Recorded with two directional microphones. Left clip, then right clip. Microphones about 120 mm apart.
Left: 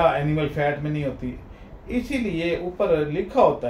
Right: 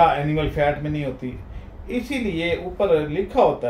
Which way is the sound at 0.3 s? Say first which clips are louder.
Right 3 dB; 25° right (ahead or behind).